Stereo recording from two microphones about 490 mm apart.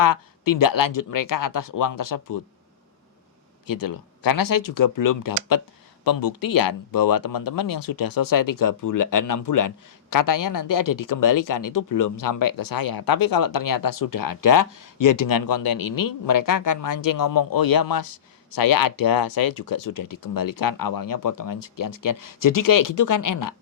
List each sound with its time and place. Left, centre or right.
0.0 s speech: left
3.7 s speech: left